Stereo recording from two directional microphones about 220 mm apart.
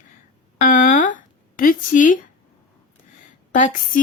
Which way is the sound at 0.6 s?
35° left (ahead or behind).